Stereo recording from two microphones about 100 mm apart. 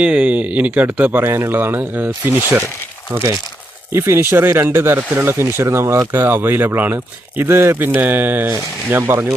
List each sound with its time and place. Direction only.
0.0 s speech: 10° right (ahead or behind)